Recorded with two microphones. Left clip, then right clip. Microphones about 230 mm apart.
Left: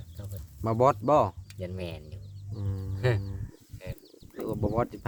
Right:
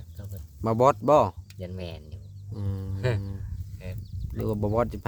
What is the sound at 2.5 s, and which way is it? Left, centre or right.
Speech, right.